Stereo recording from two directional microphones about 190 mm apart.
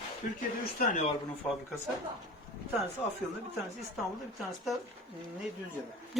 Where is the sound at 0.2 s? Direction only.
45° left (ahead or behind).